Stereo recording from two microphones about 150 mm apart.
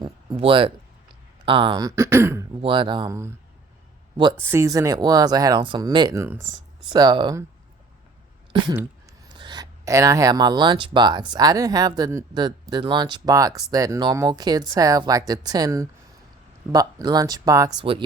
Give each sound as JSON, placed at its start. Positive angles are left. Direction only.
{"t": 0.3, "sound": "speech", "side_deg": -35}
{"t": 2.6, "sound": "speech", "side_deg": -35}
{"t": 3.1, "sound": "speech", "side_deg": -20}
{"t": 4.4, "sound": "speech", "side_deg": -20}
{"t": 6.2, "sound": "speech", "side_deg": -15}
{"t": 6.9, "sound": "speech", "side_deg": -30}
{"t": 8.5, "sound": "speech", "side_deg": -30}